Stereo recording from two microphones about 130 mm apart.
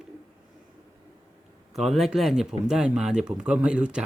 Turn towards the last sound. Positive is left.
turn(degrees=-5)  # may be behind; listen again after turning